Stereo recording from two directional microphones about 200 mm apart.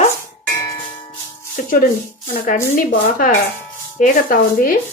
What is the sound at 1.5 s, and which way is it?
Music, 45° left (ahead or behind).